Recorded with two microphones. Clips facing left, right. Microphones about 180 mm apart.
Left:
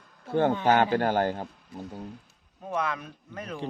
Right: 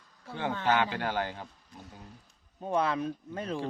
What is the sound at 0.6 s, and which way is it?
Speech, 45° left (ahead or behind).